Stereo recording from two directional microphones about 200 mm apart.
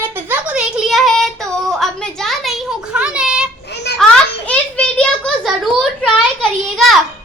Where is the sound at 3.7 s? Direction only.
55° left (ahead or behind).